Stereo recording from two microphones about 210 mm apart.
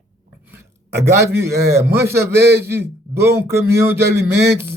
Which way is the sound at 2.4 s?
50° right (ahead or behind).